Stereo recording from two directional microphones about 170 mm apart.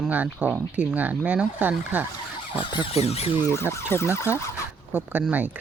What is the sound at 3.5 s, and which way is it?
Speech, 15° left (ahead or behind).